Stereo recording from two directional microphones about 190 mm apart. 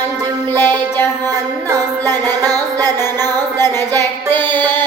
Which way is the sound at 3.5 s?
10° left (ahead or behind).